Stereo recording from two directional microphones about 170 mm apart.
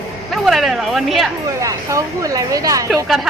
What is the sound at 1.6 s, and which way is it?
A woman's voice, 20° right (ahead or behind).